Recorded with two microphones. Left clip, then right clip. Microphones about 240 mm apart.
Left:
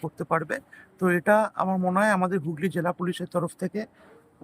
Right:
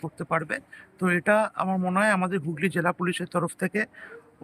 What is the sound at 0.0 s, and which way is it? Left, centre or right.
Speech, centre.